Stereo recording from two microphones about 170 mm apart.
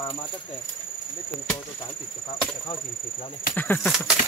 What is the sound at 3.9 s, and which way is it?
Speech, centre (ahead or behind).